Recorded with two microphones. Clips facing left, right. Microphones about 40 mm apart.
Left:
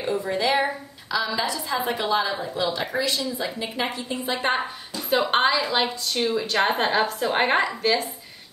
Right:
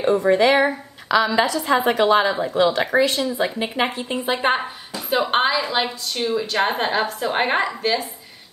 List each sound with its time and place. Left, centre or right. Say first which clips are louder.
0.0 s a woman's voice: right 8 dB; right
2.9 s a woman's voice: right 7 dB; right
5.1 s a woman's voice: right 1 dB; centre